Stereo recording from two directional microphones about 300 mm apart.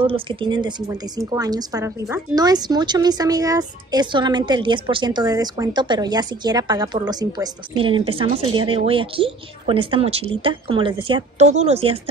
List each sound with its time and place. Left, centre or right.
0.0 s a woman's voice: centre